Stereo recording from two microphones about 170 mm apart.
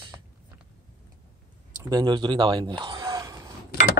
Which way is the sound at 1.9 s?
25° right (ahead or behind).